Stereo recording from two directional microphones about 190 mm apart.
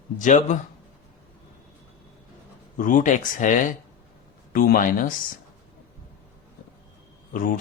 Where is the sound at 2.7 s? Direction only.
45° left (ahead or behind).